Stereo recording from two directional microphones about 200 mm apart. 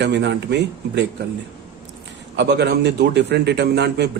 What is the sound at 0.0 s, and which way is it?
Speech, 60° right (ahead or behind).